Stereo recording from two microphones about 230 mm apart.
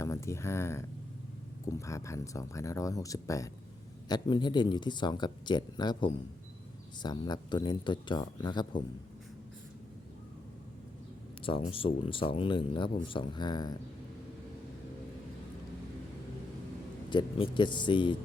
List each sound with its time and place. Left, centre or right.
0.0 s speech: centre
11.4 s speech: left
17.1 s speech: left